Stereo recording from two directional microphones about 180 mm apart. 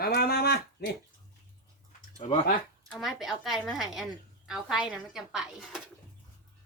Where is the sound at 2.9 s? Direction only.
Centre (ahead or behind).